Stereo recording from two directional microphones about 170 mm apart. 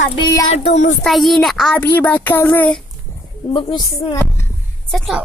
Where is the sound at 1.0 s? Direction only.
Centre (ahead or behind).